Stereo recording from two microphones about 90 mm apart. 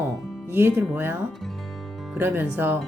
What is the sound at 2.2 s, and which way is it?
Speech, 25° right (ahead or behind).